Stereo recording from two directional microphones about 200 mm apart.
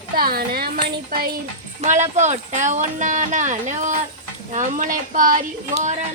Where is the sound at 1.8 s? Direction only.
35° right (ahead or behind).